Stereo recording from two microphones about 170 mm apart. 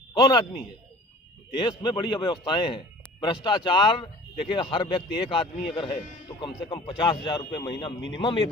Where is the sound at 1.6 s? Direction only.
25° left (ahead or behind).